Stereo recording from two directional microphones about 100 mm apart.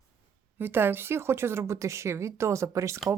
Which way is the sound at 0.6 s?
20° right (ahead or behind).